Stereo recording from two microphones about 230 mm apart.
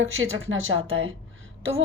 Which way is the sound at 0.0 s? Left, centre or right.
Right.